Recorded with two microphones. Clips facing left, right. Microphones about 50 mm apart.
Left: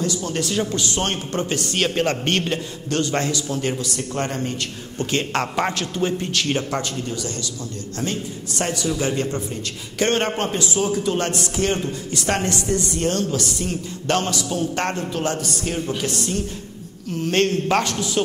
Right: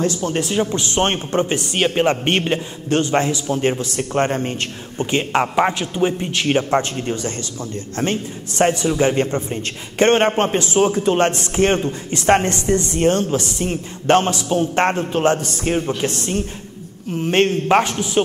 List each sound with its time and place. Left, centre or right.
0.0 s speech: right
4.9 s a man's voice: centre